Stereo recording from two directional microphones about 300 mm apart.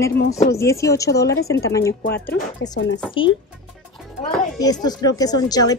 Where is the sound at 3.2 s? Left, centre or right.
Centre.